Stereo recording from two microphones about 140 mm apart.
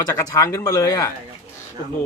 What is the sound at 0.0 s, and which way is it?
Speech, 25° left (ahead or behind).